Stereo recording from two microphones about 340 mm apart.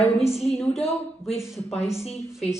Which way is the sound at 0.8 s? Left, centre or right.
Centre.